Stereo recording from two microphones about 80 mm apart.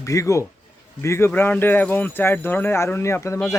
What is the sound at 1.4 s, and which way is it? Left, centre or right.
Speech, left.